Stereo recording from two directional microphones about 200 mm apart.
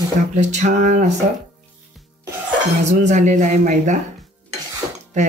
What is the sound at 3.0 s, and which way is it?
Speech, 35° right (ahead or behind).